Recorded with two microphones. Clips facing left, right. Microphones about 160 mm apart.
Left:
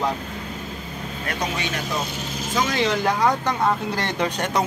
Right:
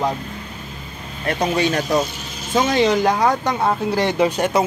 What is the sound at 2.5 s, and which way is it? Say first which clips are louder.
Speech: right 6 dB; 25° right (ahead or behind).